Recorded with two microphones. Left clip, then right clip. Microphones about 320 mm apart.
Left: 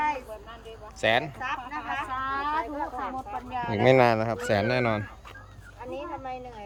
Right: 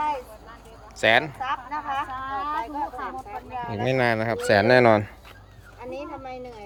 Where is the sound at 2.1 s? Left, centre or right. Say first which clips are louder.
Even; centre.